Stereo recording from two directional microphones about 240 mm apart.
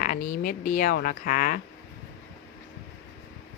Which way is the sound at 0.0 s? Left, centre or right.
Left.